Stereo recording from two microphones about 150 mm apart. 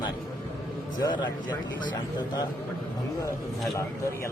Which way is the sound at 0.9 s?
30° left (ahead or behind).